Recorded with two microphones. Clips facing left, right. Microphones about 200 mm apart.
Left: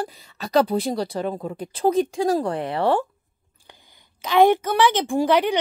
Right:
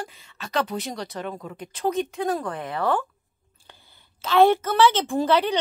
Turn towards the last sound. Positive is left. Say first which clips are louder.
# left 2 dB
turn(degrees=15)  # may be behind; listen again after turning